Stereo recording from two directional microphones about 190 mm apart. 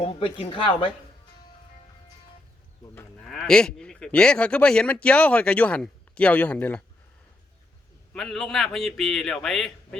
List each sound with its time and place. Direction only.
0.0 s speech: 30° left (ahead or behind)
3.2 s speech: centre (ahead or behind)
8.1 s speech: centre (ahead or behind)